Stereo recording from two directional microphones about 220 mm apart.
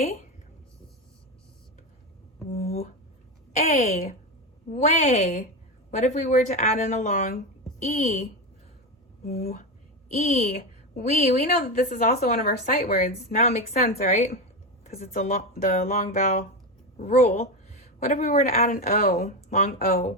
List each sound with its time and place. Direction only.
3.5 s a woman's voice: 30° left (ahead or behind)
9.4 s a woman's voice: 30° left (ahead or behind)